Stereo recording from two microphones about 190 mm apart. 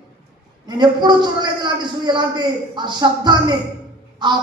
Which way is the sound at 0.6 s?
25° right (ahead or behind).